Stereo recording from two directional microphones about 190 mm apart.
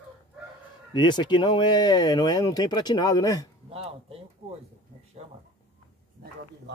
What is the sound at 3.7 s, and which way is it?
Speech, 30° right (ahead or behind).